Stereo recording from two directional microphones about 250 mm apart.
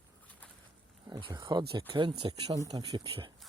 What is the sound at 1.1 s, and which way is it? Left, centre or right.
Speech, centre.